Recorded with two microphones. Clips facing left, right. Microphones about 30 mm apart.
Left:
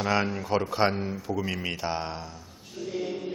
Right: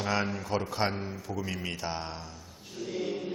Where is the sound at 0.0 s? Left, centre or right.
Centre.